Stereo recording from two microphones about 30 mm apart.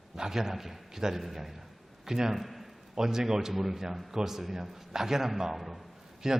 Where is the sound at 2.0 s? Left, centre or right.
Centre.